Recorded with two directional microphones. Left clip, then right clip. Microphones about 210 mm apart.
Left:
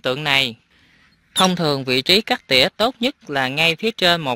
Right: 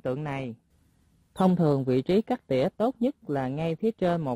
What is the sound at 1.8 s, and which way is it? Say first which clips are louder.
A man's voice: left 9 dB; centre (ahead or behind).